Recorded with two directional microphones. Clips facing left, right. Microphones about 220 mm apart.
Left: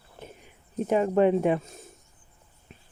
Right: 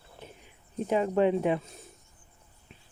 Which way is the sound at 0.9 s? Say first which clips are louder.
Left 3 dB; 50° left (ahead or behind).